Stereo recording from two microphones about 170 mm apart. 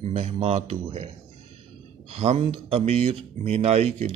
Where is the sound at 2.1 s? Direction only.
35° right (ahead or behind).